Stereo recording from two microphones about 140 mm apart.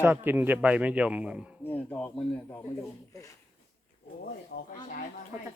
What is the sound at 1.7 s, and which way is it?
Speech, 15° left (ahead or behind).